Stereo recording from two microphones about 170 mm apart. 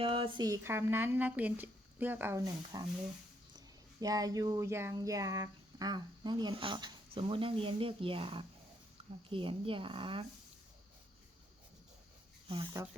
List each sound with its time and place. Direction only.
0.0 s speech: 30° right (ahead or behind)
4.0 s a sound: 20° right (ahead or behind)
9.3 s speech: 30° right (ahead or behind)
12.5 s speech: 30° right (ahead or behind)